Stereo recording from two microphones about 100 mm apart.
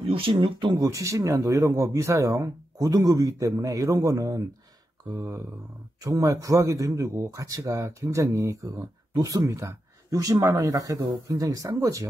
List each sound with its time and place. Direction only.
0.1 s speech: 60° right (ahead or behind)
0.7 s a man's voice: 30° right (ahead or behind)